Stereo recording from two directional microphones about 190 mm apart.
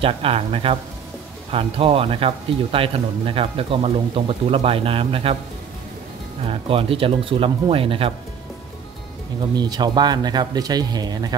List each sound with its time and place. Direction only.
0.0 s speech: 30° right (ahead or behind)
6.4 s speech: 30° right (ahead or behind)
9.6 s speech: 20° right (ahead or behind)